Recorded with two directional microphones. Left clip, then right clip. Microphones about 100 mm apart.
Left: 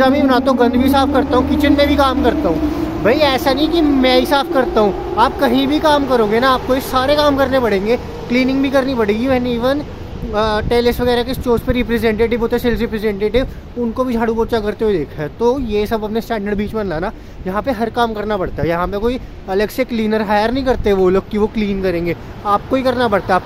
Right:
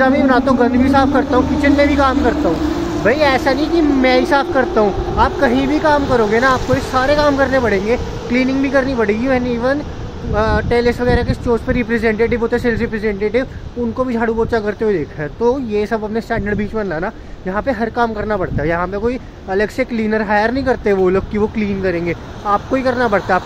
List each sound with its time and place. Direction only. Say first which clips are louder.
0.0 s a woman's voice: even; 15° left (ahead or behind)